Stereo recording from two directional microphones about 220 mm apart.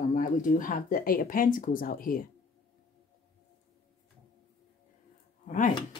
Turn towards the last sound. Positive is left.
turn(degrees=35)  # may be behind; listen again after turning